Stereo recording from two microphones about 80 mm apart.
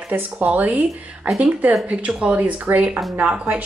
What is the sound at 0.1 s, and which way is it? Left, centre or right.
A woman's voice, centre.